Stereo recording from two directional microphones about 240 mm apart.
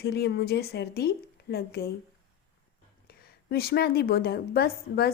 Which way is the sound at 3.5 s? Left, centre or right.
Left.